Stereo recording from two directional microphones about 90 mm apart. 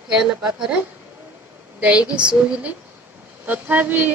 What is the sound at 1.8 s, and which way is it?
Speech, 15° right (ahead or behind).